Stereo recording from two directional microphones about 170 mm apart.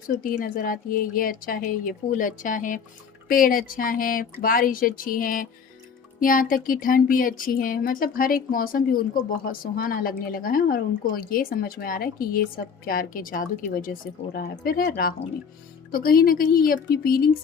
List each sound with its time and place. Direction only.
0.2 s a woman's voice: 55° left (ahead or behind)